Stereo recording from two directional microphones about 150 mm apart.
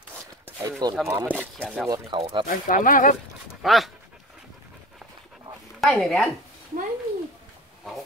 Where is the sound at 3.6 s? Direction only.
Centre (ahead or behind).